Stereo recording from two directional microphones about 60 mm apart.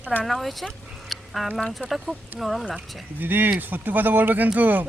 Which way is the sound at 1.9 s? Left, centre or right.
Centre.